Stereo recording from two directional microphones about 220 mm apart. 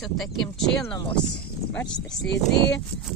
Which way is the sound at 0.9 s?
20° left (ahead or behind).